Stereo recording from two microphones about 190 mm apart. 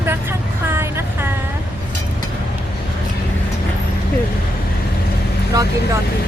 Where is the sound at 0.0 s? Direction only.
10° right (ahead or behind).